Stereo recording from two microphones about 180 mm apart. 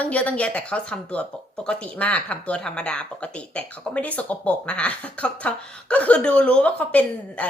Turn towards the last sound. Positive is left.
turn(degrees=10)  # may be behind; listen again after turning